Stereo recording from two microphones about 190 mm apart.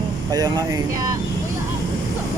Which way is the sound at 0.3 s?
20° right (ahead or behind).